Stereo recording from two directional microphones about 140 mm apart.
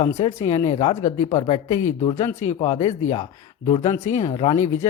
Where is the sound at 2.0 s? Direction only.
50° left (ahead or behind).